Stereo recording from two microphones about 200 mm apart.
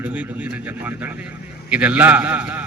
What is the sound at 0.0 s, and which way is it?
A man's voice, 10° right (ahead or behind).